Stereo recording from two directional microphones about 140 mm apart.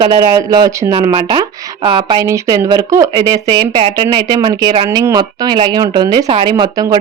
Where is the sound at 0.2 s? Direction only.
25° right (ahead or behind).